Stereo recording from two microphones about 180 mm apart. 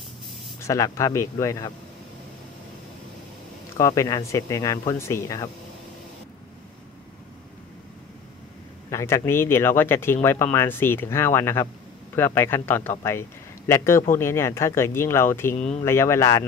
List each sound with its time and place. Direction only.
0.6 s speech: 15° left (ahead or behind)
3.7 s speech: 15° left (ahead or behind)
8.9 s speech: 15° left (ahead or behind)